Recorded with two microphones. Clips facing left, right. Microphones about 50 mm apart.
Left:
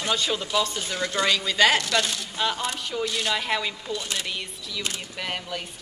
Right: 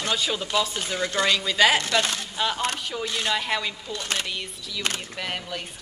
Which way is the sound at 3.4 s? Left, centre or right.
Centre.